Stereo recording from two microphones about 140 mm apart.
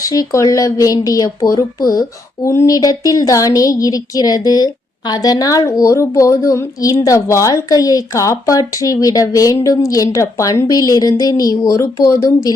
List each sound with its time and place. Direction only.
0.0 s speech: 25° left (ahead or behind)